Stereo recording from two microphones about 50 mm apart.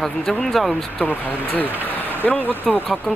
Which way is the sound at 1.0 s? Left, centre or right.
Left.